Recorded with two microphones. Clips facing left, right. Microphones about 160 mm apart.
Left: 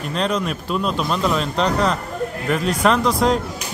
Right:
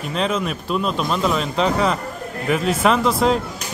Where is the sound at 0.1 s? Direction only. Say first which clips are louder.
Even; 5° right (ahead or behind).